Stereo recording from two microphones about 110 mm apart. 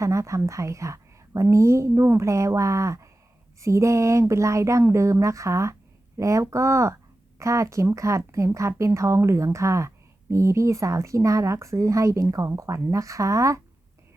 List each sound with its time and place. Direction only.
0.0 s speech: 30° right (ahead or behind)